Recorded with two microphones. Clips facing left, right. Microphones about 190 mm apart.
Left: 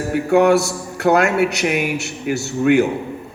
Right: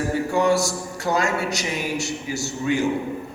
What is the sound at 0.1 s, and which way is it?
A man's voice, 60° left (ahead or behind).